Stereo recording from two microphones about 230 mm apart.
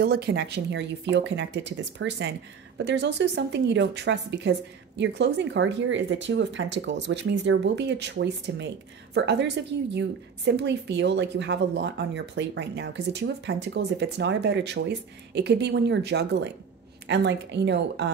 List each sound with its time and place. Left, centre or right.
0.0 s a woman's voice: right